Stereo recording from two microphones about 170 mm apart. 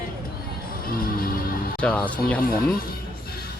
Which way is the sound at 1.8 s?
10° left (ahead or behind).